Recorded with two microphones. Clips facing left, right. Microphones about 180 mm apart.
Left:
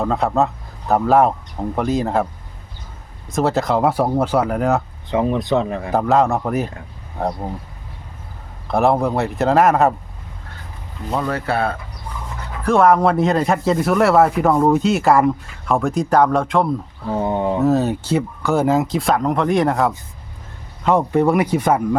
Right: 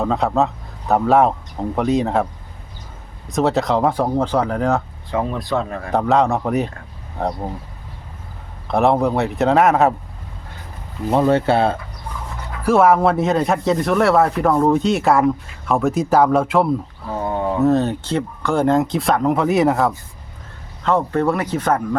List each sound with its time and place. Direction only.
0.0 s speech: centre (ahead or behind)
3.2 s speech: centre (ahead or behind)
5.1 s speech: 20° left (ahead or behind)
5.9 s speech: centre (ahead or behind)
8.6 s speech: centre (ahead or behind)
11.1 s speech: 25° right (ahead or behind)
12.6 s speech: 5° right (ahead or behind)
17.2 s a sound: 25° left (ahead or behind)
17.6 s speech: 5° left (ahead or behind)
20.8 s speech: 15° left (ahead or behind)